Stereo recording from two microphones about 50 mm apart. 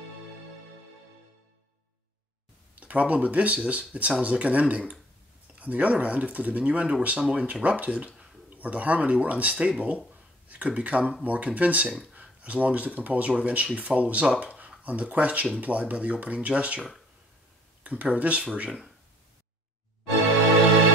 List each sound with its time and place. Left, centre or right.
2.7 s speech: right
14.4 s a sound: right
14.8 s speech: right
17.8 s speech: right